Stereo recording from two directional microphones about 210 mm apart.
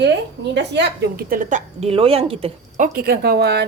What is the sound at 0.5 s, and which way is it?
A woman's voice, 55° right (ahead or behind).